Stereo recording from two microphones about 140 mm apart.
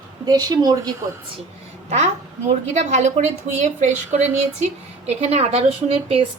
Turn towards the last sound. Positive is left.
turn(degrees=-45)  # may be behind; listen again after turning